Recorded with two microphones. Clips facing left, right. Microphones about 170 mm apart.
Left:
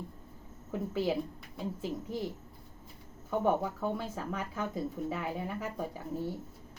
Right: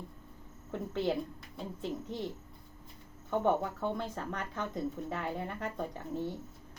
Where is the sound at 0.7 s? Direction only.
5° left (ahead or behind).